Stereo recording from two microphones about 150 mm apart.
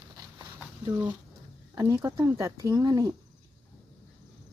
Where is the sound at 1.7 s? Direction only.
25° right (ahead or behind).